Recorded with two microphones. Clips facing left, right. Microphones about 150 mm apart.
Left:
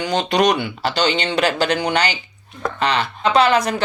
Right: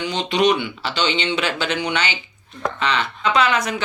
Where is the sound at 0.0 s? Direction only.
40° left (ahead or behind).